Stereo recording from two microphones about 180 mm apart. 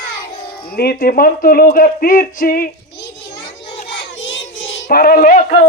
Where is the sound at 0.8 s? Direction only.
55° left (ahead or behind).